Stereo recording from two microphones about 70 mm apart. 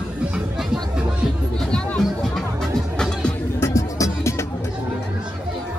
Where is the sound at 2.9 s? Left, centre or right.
Centre.